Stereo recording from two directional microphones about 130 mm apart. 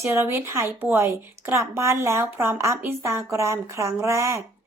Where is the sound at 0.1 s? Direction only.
20° right (ahead or behind).